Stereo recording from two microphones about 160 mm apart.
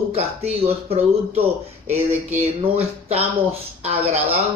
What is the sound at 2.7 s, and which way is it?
Speech, 40° right (ahead or behind).